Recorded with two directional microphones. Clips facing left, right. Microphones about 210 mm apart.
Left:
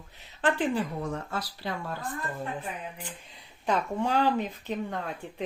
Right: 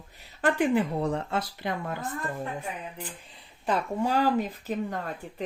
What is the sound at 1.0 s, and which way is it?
Speech, 35° right (ahead or behind).